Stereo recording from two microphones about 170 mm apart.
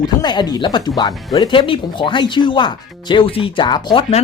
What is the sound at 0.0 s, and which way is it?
Speech, 25° left (ahead or behind).